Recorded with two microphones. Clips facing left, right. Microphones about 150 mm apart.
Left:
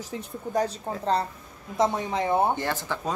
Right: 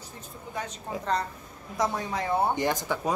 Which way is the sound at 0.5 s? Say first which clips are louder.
Left 7 dB; 30° left (ahead or behind).